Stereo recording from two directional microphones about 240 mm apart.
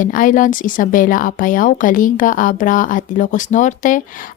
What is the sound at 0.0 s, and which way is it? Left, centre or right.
A woman's voice, left.